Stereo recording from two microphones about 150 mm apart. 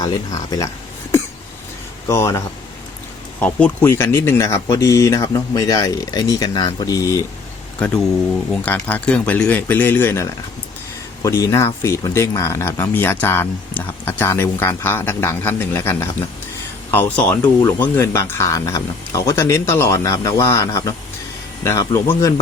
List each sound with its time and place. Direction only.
0.0 s speech: 25° left (ahead or behind)
2.0 s speech: 20° left (ahead or behind)
3.4 s speech: 10° left (ahead or behind)
8.6 s speech: 10° left (ahead or behind)
17.4 s speech: 25° left (ahead or behind)
17.7 s speech: 15° left (ahead or behind)